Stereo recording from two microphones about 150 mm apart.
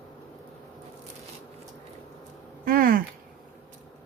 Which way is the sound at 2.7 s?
75° right (ahead or behind).